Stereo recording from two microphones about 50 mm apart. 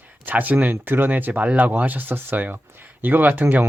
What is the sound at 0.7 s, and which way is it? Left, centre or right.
Speech, right.